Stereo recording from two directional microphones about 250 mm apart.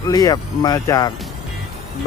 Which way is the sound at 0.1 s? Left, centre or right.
Centre.